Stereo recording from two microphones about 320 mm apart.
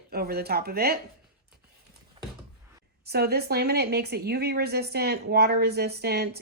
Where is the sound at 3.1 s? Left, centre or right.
Right.